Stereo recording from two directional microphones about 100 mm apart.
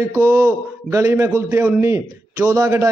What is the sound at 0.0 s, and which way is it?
A man's voice, 30° right (ahead or behind).